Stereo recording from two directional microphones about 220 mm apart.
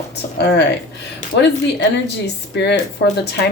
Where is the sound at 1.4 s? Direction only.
50° left (ahead or behind).